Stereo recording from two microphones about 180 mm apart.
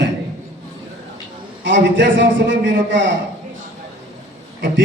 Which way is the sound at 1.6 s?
85° right.